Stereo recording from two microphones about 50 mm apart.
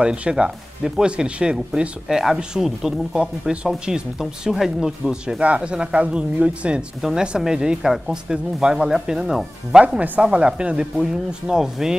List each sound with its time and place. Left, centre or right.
0.0 s speech: centre
5.4 s speech: right
7.0 s speech: centre
9.8 s speech: right